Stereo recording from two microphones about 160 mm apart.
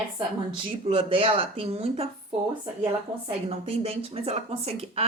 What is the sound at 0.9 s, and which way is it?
A woman's voice, 35° right (ahead or behind).